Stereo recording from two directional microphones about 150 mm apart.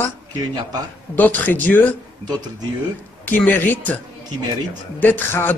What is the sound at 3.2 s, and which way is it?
Speech, 10° left (ahead or behind).